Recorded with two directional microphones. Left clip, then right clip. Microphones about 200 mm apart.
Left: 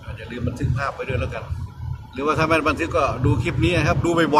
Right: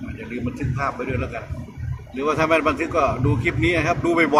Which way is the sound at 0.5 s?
15° left (ahead or behind).